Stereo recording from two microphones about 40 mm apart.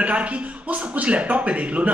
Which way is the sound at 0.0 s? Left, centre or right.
Right.